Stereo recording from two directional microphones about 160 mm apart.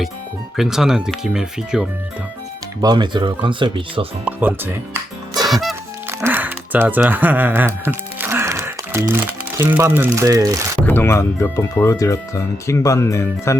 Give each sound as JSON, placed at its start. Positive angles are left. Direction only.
{"t": 0.5, "sound": "speech", "side_deg": 0}
{"t": 2.8, "sound": "speech", "side_deg": -25}
{"t": 4.3, "sound": "speech", "side_deg": -10}
{"t": 5.5, "sound": "music", "side_deg": 0}
{"t": 6.1, "sound": "music", "side_deg": -15}
{"t": 10.2, "sound": "speech", "side_deg": -20}
{"t": 10.8, "sound": "speech", "side_deg": 15}